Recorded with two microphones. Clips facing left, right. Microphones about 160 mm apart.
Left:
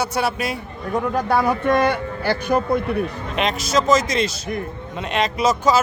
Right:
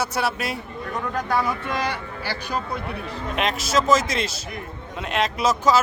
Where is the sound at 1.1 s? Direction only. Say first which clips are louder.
Left 4 dB; 40° left (ahead or behind).